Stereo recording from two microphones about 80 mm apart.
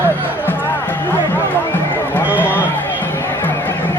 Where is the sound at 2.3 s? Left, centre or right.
Left.